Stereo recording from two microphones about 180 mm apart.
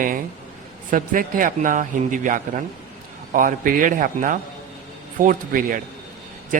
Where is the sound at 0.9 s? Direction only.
50° right (ahead or behind).